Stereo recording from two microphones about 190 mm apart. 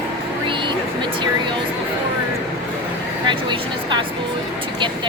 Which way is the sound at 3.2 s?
25° right (ahead or behind).